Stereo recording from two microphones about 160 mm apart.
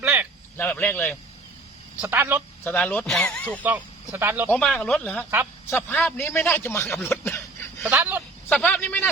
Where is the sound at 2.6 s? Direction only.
10° left (ahead or behind).